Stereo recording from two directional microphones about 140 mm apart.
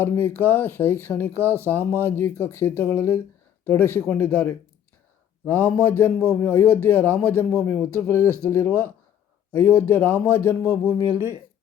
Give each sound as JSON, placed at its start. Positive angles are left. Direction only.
{"t": 0.0, "sound": "a man's voice", "side_deg": 15}